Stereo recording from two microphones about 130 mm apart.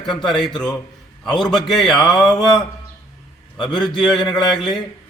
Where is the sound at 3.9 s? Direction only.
35° left (ahead or behind).